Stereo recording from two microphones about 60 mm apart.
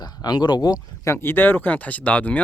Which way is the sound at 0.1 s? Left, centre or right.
Left.